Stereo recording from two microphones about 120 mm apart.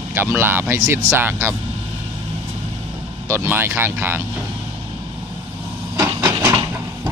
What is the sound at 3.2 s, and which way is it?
Speech, 20° right (ahead or behind).